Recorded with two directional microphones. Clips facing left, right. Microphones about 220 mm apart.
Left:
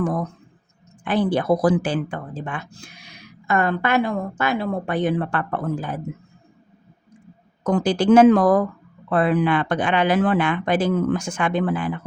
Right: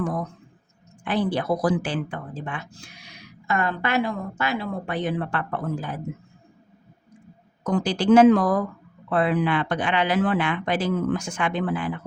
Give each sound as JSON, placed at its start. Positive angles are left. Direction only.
{"t": 1.0, "sound": "speech", "side_deg": 50}
{"t": 7.6, "sound": "speech", "side_deg": 50}